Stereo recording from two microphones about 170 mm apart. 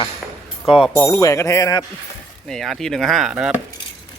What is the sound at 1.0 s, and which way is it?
Speech, 20° left (ahead or behind).